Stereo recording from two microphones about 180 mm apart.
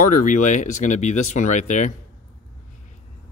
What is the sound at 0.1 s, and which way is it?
Speech, 45° left (ahead or behind).